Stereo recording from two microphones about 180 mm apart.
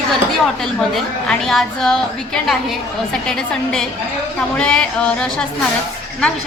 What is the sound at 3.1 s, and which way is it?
A woman's voice, 5° left (ahead or behind).